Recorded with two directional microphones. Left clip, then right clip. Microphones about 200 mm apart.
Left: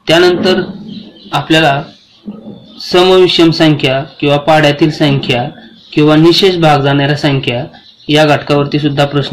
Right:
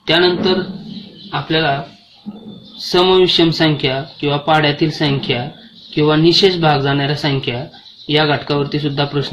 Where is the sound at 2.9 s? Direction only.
10° left (ahead or behind).